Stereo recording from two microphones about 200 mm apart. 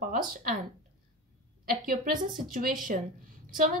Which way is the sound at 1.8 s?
45° right (ahead or behind).